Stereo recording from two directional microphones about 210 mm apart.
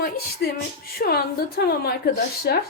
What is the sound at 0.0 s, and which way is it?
A woman's voice, 50° left (ahead or behind).